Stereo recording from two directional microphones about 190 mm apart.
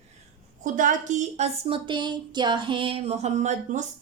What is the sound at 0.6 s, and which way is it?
A woman's voice, 40° right (ahead or behind).